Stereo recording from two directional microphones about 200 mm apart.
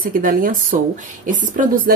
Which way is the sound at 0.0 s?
45° right (ahead or behind).